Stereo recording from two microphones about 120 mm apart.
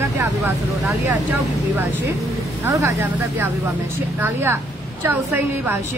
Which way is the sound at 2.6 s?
25° right (ahead or behind).